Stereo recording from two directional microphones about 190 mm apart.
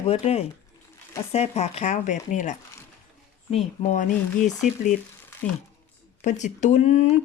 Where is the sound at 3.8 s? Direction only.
40° left (ahead or behind).